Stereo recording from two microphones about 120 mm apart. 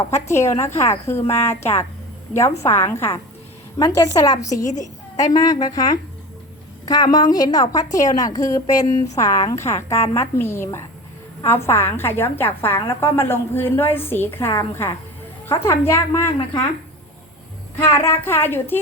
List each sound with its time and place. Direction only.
0.1 s a woman's voice: 25° left (ahead or behind)
4.6 s a woman's voice: 90° left
5.1 s a woman's voice: 30° left (ahead or behind)
17.9 s a woman's voice: 20° left (ahead or behind)